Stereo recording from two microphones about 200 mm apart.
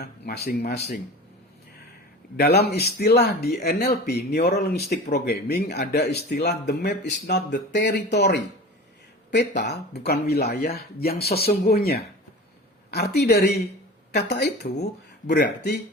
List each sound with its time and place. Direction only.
0.0 s speech: 55° left (ahead or behind)
2.3 s speech: 55° left (ahead or behind)